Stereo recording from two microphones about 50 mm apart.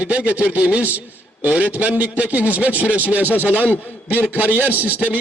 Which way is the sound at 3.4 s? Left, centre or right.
Right.